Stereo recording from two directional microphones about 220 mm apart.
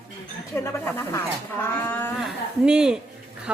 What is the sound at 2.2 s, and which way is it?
Speech, 5° right (ahead or behind).